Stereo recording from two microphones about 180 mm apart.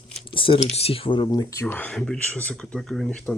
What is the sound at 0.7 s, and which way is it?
Speech, 30° left (ahead or behind).